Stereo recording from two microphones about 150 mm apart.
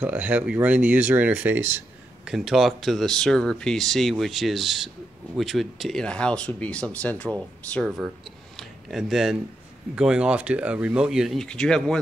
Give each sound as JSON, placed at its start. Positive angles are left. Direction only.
{"t": 0.0, "sound": "speech", "side_deg": -10}
{"t": 2.2, "sound": "speech", "side_deg": 0}
{"t": 8.5, "sound": "a sound", "side_deg": 0}
{"t": 9.9, "sound": "speech", "side_deg": -5}